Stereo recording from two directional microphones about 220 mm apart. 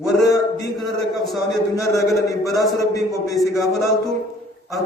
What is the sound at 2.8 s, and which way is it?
Speech, 15° left (ahead or behind).